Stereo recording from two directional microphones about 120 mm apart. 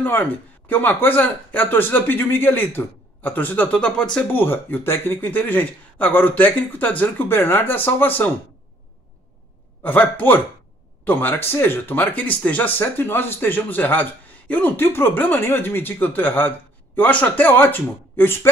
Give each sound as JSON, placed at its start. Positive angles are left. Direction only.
{"t": 0.7, "sound": "speech", "side_deg": 15}
{"t": 9.8, "sound": "speech", "side_deg": 15}